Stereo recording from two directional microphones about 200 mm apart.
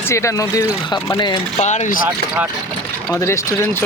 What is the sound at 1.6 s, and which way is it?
Speech, 35° left (ahead or behind).